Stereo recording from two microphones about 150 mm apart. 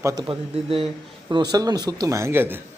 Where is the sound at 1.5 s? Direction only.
25° right (ahead or behind).